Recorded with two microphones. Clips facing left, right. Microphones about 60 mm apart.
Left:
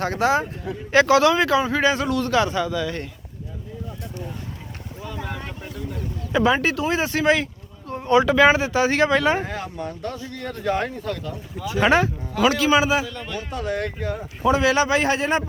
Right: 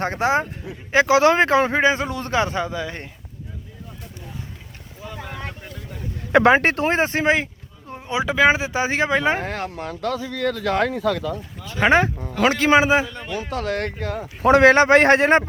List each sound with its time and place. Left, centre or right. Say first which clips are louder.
0.0 s a man's voice: even; right
0.9 s a man's voice: even; centre
1.2 s a man's voice: right 2 dB; right
1.8 s a man's voice: even; right
5.0 s boat: left 2 dB; centre
6.3 s a man's voice: right 5 dB; right
7.9 s speech: left 4 dB; centre
9.4 s speech: right 1 dB; right
11.9 s a man's voice: right 3 dB; right
13.2 s speech: right 3 dB; centre
13.5 s a man's voice: right 1 dB; right